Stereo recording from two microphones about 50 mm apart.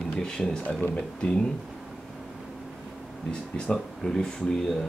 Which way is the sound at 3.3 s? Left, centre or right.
Left.